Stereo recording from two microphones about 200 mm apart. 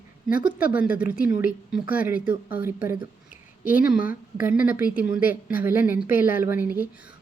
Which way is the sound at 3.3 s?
5° right (ahead or behind).